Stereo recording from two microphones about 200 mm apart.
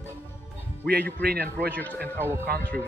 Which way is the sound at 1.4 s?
10° left (ahead or behind).